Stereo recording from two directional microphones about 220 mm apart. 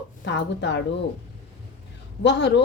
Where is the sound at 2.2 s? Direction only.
50° left (ahead or behind).